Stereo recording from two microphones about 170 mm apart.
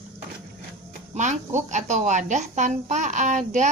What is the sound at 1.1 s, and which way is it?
Cricket, 45° right (ahead or behind).